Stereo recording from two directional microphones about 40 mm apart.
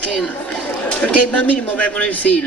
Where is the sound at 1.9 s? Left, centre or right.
Left.